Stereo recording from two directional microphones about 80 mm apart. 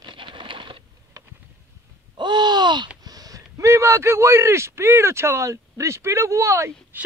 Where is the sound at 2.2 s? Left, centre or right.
Right.